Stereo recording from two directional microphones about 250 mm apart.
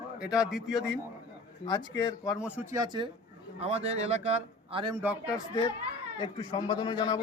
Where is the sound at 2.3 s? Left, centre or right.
Centre.